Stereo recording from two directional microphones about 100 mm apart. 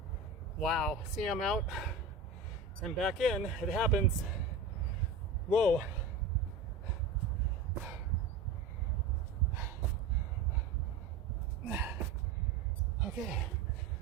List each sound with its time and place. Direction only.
0.6 s speech: 5° left (ahead or behind)
5.5 s speech: centre (ahead or behind)
11.6 s gasp: 15° right (ahead or behind)
13.1 s speech: 5° right (ahead or behind)